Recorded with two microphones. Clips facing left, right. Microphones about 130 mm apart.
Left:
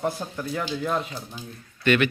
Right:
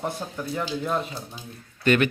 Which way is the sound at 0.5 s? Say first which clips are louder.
Even; 5° right (ahead or behind).